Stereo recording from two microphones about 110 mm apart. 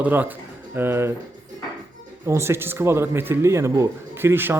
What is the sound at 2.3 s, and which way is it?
A man's voice, 25° right (ahead or behind).